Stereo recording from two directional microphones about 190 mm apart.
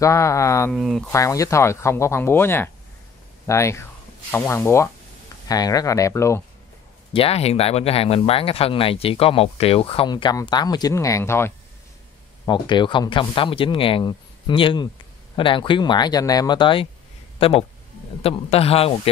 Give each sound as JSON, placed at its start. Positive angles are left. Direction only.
{"t": 0.0, "sound": "speech", "side_deg": 15}
{"t": 0.7, "sound": "speech", "side_deg": 0}
{"t": 1.1, "sound": "speech", "side_deg": 15}
{"t": 7.2, "sound": "speech", "side_deg": 30}
{"t": 12.4, "sound": "a man's voice", "side_deg": 25}